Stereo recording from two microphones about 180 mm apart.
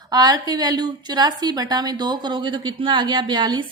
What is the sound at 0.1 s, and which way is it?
A woman's voice, 20° right (ahead or behind).